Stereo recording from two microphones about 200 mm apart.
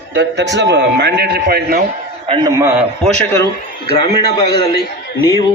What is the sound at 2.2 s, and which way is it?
Speech, 25° right (ahead or behind).